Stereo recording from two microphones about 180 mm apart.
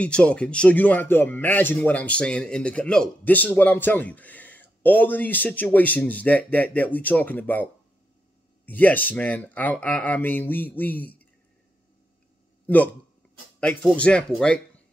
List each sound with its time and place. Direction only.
0.0 s speech: 5° left (ahead or behind)
8.6 s speech: 10° left (ahead or behind)
12.6 s speech: 10° left (ahead or behind)